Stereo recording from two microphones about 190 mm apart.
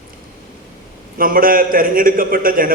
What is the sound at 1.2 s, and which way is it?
A man's voice, 50° right (ahead or behind).